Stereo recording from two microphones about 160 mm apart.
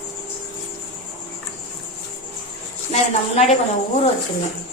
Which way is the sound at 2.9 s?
40° left (ahead or behind).